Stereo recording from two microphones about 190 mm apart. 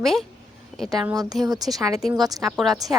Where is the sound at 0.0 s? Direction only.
Centre (ahead or behind).